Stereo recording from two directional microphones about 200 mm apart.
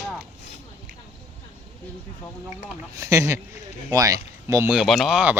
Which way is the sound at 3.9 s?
15° right (ahead or behind).